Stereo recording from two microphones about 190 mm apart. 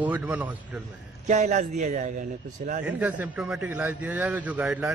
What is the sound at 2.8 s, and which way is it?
A man's voice, 10° right (ahead or behind).